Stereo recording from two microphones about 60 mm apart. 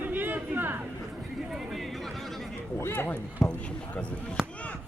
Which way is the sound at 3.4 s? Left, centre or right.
Centre.